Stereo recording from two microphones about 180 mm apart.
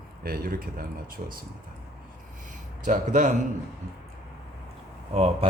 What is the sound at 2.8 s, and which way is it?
Speech, 45° right (ahead or behind).